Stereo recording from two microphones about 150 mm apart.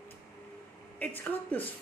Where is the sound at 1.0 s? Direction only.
10° left (ahead or behind).